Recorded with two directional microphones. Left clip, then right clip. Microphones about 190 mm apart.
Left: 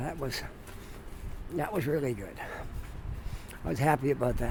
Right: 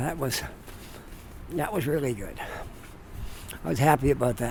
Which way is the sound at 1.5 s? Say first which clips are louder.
Right 3 dB; 15° right (ahead or behind).